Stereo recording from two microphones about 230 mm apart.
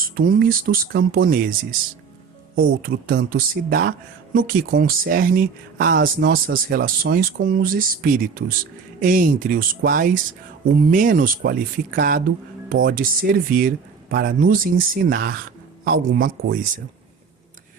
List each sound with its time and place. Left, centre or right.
0.0 s speech: right
2.6 s speech: right